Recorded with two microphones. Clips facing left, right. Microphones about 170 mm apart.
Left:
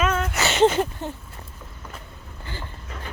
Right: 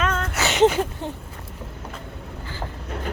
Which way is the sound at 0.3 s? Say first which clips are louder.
Right 1 dB; 15° right (ahead or behind).